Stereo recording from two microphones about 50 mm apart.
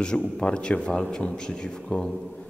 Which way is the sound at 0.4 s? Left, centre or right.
Left.